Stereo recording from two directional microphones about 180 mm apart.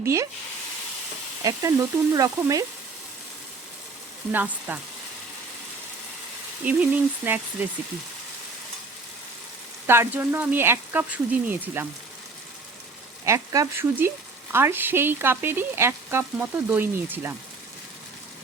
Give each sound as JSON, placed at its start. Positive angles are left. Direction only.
{"t": 0.0, "sound": "speech", "side_deg": -15}
{"t": 1.5, "sound": "stir", "side_deg": -20}
{"t": 4.3, "sound": "frying", "side_deg": -10}
{"t": 6.7, "sound": "frying", "side_deg": -10}
{"t": 9.8, "sound": "frying", "side_deg": -15}
{"t": 13.2, "sound": "frying", "side_deg": -20}